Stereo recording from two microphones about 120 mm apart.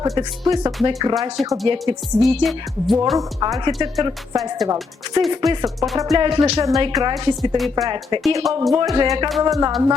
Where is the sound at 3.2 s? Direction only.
30° right (ahead or behind).